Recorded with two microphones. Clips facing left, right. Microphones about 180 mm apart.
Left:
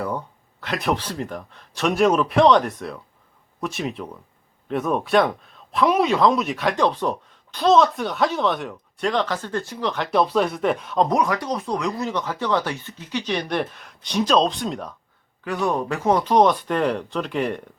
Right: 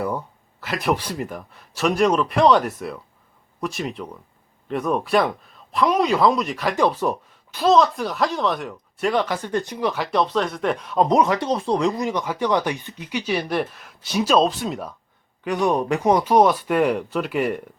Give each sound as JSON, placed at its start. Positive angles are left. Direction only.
{"t": 0.6, "sound": "a man's voice", "side_deg": 0}
{"t": 11.1, "sound": "speech", "side_deg": -25}
{"t": 11.9, "sound": "speech", "side_deg": -10}
{"t": 15.4, "sound": "speech", "side_deg": -20}